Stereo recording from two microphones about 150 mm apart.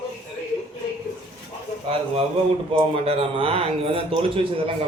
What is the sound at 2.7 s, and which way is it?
Speech, 40° right (ahead or behind).